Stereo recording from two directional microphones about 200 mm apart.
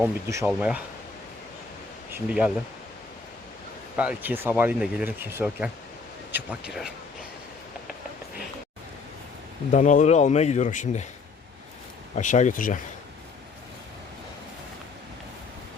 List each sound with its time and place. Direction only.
0.0 s speech: 15° right (ahead or behind)
2.1 s speech: 5° right (ahead or behind)
3.9 s speech: 5° right (ahead or behind)
9.7 s speech: 35° left (ahead or behind)
12.1 s speech: 40° left (ahead or behind)